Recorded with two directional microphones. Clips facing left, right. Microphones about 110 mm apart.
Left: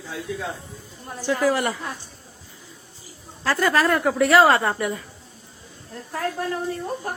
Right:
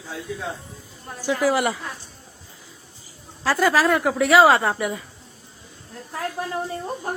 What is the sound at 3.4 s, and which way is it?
Speech, centre (ahead or behind).